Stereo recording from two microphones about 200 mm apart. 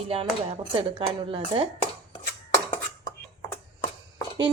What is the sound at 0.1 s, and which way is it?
A woman's voice, 30° right (ahead or behind).